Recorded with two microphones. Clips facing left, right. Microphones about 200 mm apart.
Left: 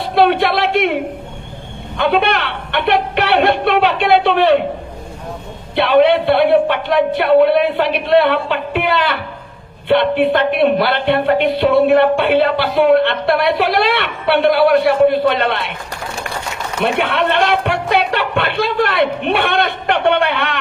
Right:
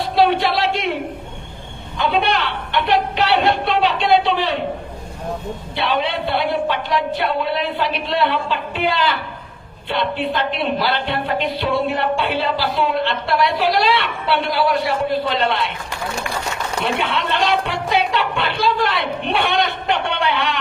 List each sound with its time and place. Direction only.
0.0 s music: 60° left (ahead or behind)
2.0 s speech: 60° left (ahead or behind)
5.7 s speech: 60° left (ahead or behind)
16.8 s speech: 60° left (ahead or behind)